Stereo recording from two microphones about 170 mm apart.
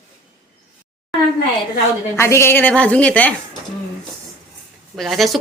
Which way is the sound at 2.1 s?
15° left (ahead or behind).